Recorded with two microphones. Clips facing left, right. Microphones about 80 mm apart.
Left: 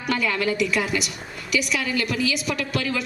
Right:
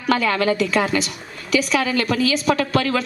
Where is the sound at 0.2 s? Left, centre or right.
Right.